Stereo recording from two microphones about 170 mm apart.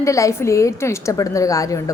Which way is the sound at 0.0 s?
20° left (ahead or behind).